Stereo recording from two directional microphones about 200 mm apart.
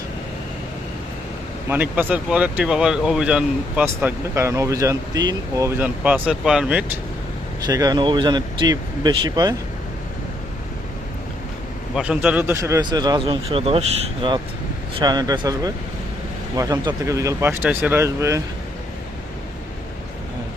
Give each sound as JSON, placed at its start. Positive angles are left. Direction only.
{"t": 1.7, "sound": "speech", "side_deg": -10}
{"t": 7.7, "sound": "speech", "side_deg": -20}
{"t": 11.9, "sound": "speech", "side_deg": -5}